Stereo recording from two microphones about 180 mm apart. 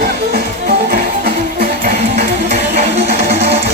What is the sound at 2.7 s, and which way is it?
Music, 35° right (ahead or behind).